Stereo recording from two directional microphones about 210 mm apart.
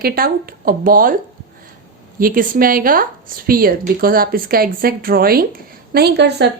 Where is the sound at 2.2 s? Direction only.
40° right (ahead or behind).